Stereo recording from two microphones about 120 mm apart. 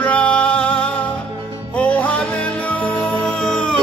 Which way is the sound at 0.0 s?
10° left (ahead or behind).